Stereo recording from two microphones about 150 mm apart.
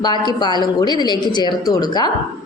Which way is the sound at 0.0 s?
30° left (ahead or behind).